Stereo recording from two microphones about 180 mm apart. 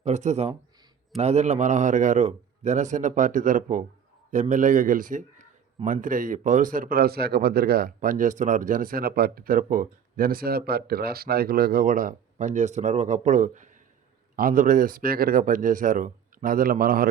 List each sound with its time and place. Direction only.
0.0 s a man's voice: 40° right (ahead or behind); by 17.1 s 55° right (ahead or behind)